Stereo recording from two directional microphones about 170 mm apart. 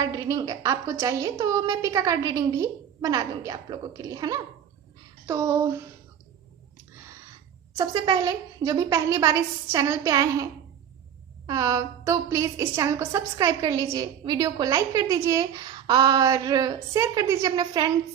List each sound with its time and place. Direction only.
0.0 s a woman's voice: 20° right (ahead or behind)
7.8 s a woman's voice: 25° right (ahead or behind)